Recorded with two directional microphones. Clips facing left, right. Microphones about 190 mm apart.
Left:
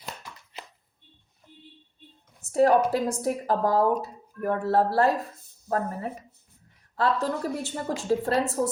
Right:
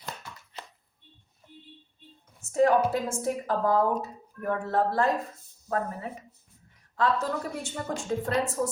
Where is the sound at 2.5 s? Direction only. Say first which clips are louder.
Left 2 dB; 35° left (ahead or behind).